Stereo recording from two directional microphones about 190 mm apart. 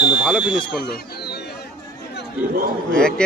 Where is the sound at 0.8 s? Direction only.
55° left (ahead or behind).